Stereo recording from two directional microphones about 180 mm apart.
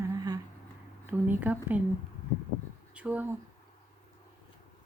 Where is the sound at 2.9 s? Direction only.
10° right (ahead or behind).